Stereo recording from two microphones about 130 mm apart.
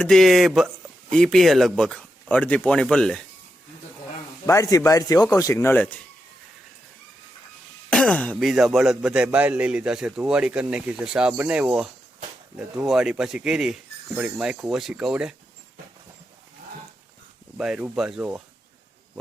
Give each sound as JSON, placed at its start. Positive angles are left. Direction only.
{"t": 0.0, "sound": "speech", "side_deg": 5}
{"t": 4.4, "sound": "speech", "side_deg": 25}
{"t": 7.9, "sound": "throat clearing", "side_deg": 10}
{"t": 8.4, "sound": "a man's voice", "side_deg": 0}
{"t": 17.6, "sound": "speech", "side_deg": -5}